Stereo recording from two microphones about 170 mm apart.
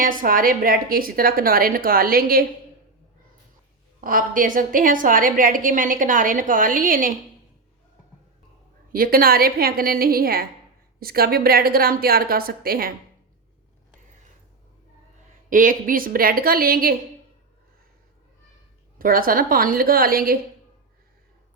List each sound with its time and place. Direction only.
0.0 s a woman's voice: 55° right (ahead or behind)
4.0 s a woman's voice: 55° right (ahead or behind)
8.9 s a woman's voice: 60° right (ahead or behind)
15.4 s a woman's voice: 50° right (ahead or behind)
18.9 s a woman's voice: 55° right (ahead or behind)